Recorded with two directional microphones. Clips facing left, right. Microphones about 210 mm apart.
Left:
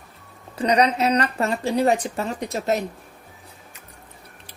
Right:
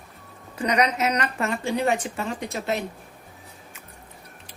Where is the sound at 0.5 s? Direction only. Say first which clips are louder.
Left 4 dB; 35° left (ahead or behind).